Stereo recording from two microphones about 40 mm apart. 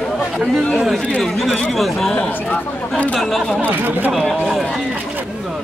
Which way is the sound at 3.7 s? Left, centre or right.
Right.